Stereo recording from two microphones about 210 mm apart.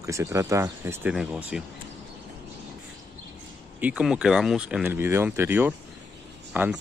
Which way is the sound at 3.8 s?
5° right (ahead or behind).